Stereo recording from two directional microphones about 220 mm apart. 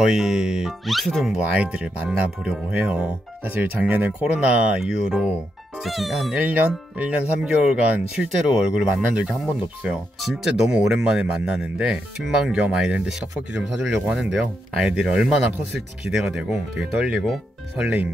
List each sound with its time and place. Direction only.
0.0 s speech: 5° right (ahead or behind)